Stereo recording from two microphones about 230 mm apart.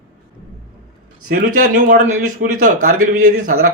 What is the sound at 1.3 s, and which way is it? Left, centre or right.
Speech, right.